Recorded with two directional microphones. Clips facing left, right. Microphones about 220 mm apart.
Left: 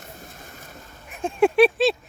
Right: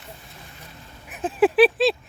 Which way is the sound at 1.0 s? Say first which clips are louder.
Even; 5° right (ahead or behind).